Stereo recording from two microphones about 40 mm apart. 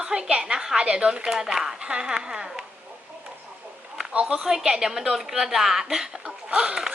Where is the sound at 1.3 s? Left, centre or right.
Centre.